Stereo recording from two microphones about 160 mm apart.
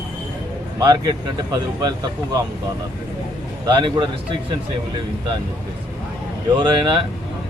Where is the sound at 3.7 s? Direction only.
30° right (ahead or behind).